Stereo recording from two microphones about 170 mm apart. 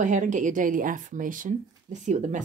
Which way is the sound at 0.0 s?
45° right (ahead or behind).